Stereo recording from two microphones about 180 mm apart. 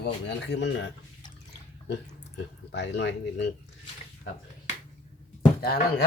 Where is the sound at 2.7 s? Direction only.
75° left (ahead or behind).